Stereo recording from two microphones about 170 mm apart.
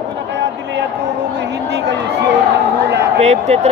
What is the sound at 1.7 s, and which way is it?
Speech, 90° right.